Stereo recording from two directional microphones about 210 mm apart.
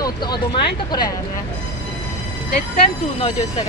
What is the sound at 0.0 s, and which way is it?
Vehicle, 20° left (ahead or behind).